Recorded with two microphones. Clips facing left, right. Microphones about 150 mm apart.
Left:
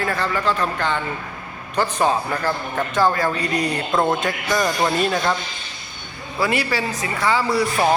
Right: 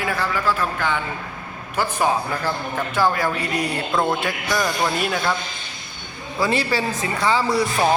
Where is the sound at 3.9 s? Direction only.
15° left (ahead or behind).